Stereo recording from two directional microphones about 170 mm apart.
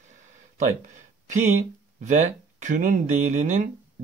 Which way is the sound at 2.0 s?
45° right (ahead or behind).